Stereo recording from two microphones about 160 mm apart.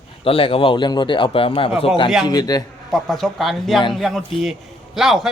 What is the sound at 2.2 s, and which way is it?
Speech, 25° left (ahead or behind).